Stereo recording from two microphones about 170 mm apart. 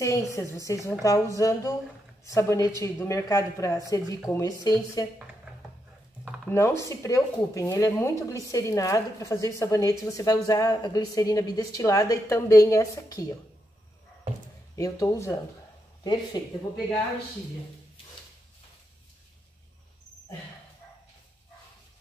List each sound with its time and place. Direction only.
0.0 s a woman's voice: 20° left (ahead or behind)
6.5 s speech: 15° left (ahead or behind)
14.8 s speech: 20° left (ahead or behind)